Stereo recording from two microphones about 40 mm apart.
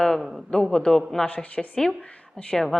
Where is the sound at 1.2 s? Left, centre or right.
Left.